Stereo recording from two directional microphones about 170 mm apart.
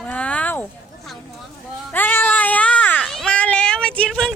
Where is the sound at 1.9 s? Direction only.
10° left (ahead or behind).